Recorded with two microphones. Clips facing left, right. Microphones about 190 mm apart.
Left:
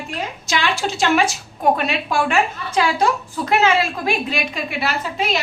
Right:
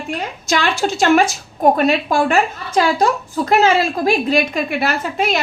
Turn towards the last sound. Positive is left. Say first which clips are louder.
# right 3 dB
turn(degrees=-50)  # may be behind; listen again after turning